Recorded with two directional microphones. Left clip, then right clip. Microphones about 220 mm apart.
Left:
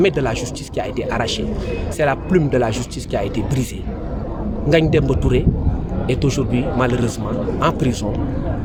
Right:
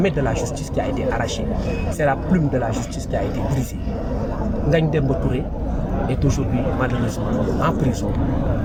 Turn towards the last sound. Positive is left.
turn(degrees=50)  # may be behind; listen again after turning